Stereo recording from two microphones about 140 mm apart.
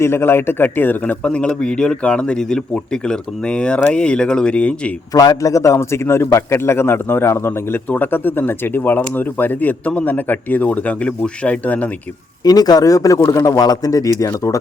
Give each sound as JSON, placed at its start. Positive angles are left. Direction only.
{"t": 0.0, "sound": "a man's voice", "side_deg": 15}
{"t": 5.1, "sound": "a man's voice", "side_deg": 25}
{"t": 12.4, "sound": "a man's voice", "side_deg": 30}